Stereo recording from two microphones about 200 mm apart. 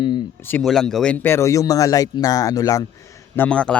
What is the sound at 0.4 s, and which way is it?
A man's voice, 5° left (ahead or behind).